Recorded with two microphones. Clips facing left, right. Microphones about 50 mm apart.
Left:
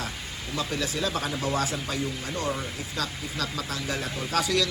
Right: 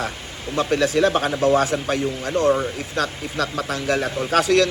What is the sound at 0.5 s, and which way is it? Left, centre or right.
Speech, right.